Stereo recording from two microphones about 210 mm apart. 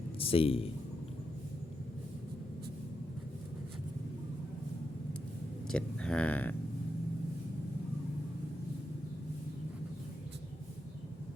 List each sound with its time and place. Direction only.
0.2 s a man's voice: 25° left (ahead or behind)
5.6 s speech: 5° left (ahead or behind)